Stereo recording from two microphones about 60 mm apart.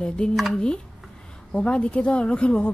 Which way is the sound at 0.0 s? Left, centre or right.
Centre.